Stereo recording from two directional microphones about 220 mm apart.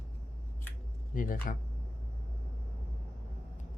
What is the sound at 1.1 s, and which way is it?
Speech, 40° left (ahead or behind).